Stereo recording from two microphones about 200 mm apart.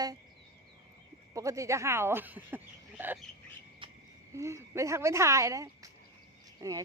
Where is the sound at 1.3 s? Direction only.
15° right (ahead or behind).